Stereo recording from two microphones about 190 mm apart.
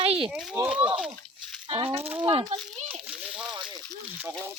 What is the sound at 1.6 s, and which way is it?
Speech, 25° right (ahead or behind).